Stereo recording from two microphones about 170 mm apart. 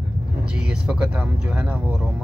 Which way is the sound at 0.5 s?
5° right (ahead or behind).